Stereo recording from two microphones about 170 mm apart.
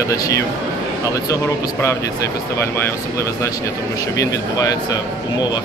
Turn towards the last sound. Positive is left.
turn(degrees=20)  # may be behind; listen again after turning